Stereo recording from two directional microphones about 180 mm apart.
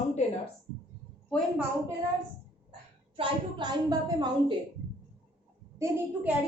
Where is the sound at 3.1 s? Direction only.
25° right (ahead or behind).